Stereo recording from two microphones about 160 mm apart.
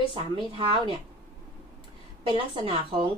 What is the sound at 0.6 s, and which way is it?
Speech, 35° right (ahead or behind).